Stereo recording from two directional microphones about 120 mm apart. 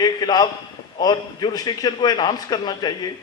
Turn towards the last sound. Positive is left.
turn(degrees=35)  # may be behind; listen again after turning